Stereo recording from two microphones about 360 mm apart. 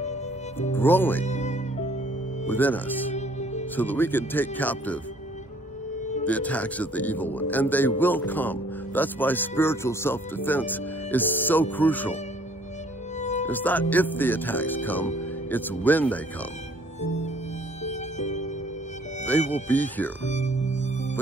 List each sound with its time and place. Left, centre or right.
0.6 s speech: centre
1.2 s music: centre
2.4 s speech: centre
3.2 s music: centre
3.7 s speech: centre
6.2 s speech: centre
13.5 s speech: centre
17.8 s music: centre
19.5 s speech: centre
20.2 s music: centre